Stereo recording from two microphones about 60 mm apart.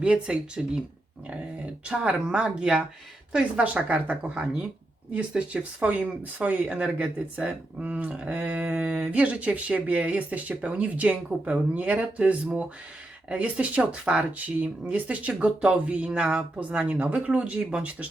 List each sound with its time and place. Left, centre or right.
0.0 s speech: centre